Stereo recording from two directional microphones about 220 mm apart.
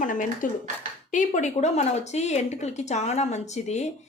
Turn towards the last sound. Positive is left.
turn(degrees=30)  # may be behind; listen again after turning